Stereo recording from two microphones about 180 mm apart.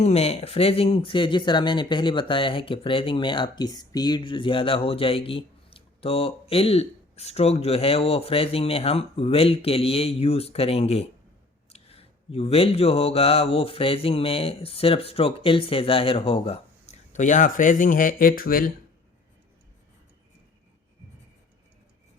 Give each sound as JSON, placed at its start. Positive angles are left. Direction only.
{"t": 0.0, "sound": "speech", "side_deg": 35}